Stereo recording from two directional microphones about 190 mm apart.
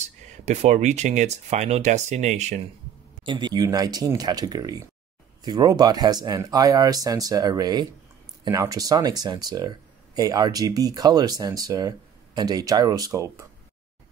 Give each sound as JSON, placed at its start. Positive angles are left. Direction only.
{"t": 0.0, "sound": "speech", "side_deg": -35}
{"t": 3.3, "sound": "speech", "side_deg": -25}